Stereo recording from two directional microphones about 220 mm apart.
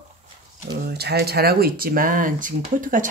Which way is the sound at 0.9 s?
45° right (ahead or behind).